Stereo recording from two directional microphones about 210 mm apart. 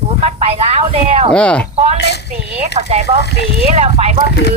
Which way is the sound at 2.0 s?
55° left (ahead or behind).